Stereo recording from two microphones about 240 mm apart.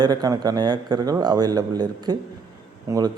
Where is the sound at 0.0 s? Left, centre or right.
Centre.